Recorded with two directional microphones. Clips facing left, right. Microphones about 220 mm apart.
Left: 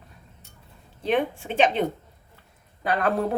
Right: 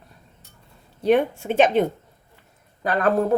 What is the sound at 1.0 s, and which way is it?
Speech, 45° right (ahead or behind).